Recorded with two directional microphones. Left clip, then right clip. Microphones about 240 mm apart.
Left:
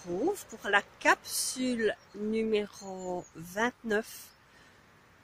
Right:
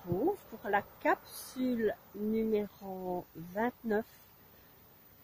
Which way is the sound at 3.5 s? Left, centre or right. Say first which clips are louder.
Left 3 dB; centre.